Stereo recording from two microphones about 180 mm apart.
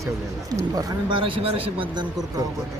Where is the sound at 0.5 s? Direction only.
25° right (ahead or behind).